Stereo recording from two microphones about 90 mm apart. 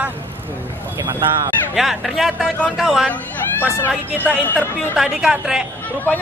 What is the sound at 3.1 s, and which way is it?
Speech, 20° left (ahead or behind).